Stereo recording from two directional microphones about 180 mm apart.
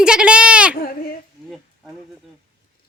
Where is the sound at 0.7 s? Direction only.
55° left (ahead or behind).